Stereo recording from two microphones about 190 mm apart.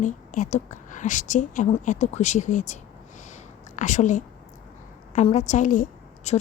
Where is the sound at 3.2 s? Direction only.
40° left (ahead or behind).